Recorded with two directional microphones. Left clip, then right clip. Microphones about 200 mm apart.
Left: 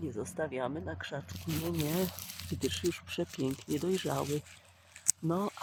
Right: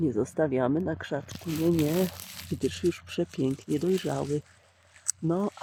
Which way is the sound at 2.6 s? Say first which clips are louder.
Right 5 dB; 10° right (ahead or behind).